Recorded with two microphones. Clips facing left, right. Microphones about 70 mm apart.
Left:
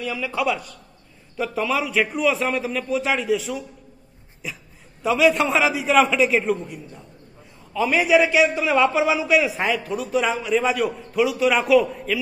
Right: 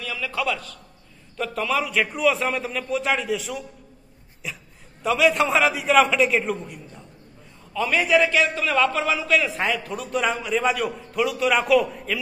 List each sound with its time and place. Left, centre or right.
0.0 s a man's voice: centre